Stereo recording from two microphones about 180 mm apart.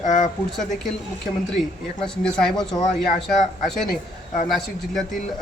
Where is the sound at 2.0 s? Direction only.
5° left (ahead or behind).